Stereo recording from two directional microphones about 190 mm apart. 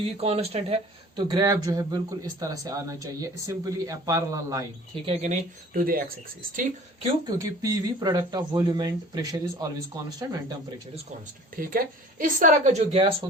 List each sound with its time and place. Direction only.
0.0 s speech: 30° right (ahead or behind)
5.0 s a woman's voice: 35° right (ahead or behind)
7.3 s speech: 20° right (ahead or behind)
11.5 s a woman's voice: 50° right (ahead or behind)